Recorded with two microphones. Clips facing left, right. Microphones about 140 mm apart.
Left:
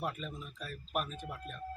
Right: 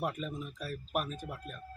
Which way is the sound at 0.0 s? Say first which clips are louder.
Right 3 dB; 10° right (ahead or behind).